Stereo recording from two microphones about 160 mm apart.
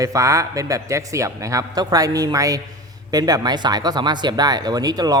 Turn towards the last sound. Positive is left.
turn(degrees=-25)  # may be behind; listen again after turning